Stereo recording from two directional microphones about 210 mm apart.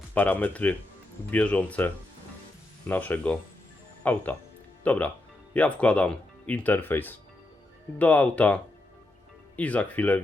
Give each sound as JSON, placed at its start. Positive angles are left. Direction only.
{"t": 0.1, "sound": "speech", "side_deg": 10}